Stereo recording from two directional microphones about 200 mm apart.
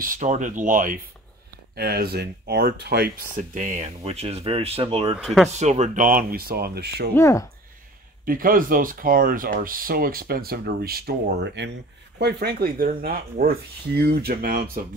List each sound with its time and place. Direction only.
0.0 s speech: 40° right (ahead or behind)
5.2 s speech: centre (ahead or behind)
5.6 s speech: 35° right (ahead or behind); by 7.1 s 55° right (ahead or behind)
7.2 s speech: 15° left (ahead or behind)
8.3 s speech: 45° right (ahead or behind)